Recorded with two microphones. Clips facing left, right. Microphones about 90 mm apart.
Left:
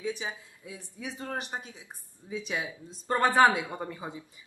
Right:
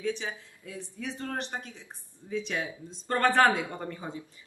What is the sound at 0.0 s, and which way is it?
Speech, 10° left (ahead or behind).